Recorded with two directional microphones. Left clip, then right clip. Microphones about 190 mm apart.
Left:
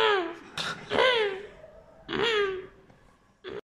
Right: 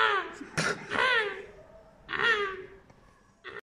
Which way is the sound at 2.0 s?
35° left (ahead or behind).